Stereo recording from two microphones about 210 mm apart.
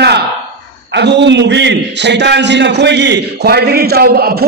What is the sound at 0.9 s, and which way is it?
A man's voice, 55° right (ahead or behind).